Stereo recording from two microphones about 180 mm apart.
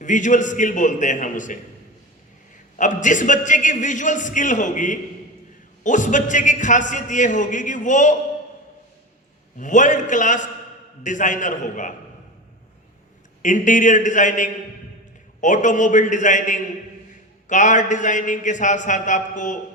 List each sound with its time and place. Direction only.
0.0 s a man's voice: 45° left (ahead or behind)
2.7 s a man's voice: 45° left (ahead or behind)
9.6 s a man's voice: 45° left (ahead or behind)
13.4 s a man's voice: 45° left (ahead or behind)